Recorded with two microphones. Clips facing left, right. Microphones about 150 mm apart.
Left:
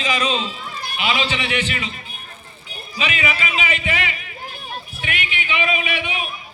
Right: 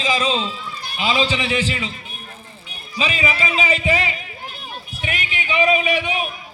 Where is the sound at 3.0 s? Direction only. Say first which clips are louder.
Right 2 dB; 30° right (ahead or behind).